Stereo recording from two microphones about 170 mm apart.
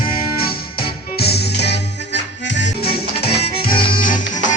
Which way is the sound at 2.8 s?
35° left (ahead or behind).